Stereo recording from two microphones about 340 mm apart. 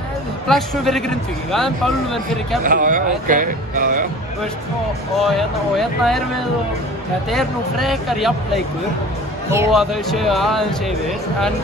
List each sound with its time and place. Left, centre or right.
0.5 s a man's voice: centre
2.6 s speech: right
5.2 s a man's voice: centre
7.2 s a man's voice: centre
9.5 s a man's voice: centre